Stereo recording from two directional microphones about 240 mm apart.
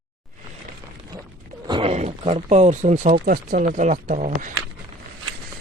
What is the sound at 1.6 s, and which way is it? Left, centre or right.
Speech, right.